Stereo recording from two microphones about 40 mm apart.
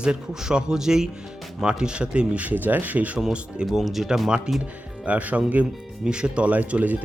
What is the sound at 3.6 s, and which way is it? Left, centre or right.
Speech, centre.